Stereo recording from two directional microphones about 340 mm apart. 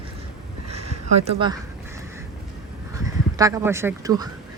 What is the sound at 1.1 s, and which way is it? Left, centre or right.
Speech, centre.